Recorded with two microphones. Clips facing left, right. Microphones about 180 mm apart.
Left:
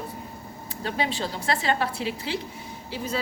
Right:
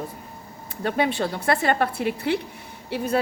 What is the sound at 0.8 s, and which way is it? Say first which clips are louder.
A woman's voice: right 5 dB; 60° right (ahead or behind).